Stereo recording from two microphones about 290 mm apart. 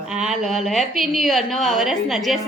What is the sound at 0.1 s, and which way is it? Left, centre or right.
A woman's voice, centre.